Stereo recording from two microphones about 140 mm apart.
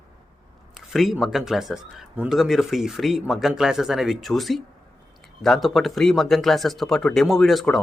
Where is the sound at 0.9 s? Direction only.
Centre (ahead or behind).